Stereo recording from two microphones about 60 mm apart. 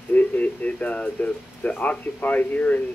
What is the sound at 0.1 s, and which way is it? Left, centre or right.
Speech, left.